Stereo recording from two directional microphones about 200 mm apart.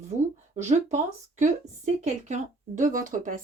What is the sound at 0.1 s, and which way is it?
Speech, 35° right (ahead or behind).